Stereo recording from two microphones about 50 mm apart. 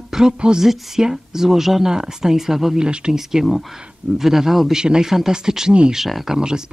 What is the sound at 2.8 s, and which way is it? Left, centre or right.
Speech, centre.